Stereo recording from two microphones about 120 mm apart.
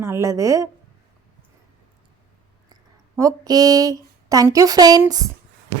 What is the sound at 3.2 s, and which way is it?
A woman's voice, 30° right (ahead or behind).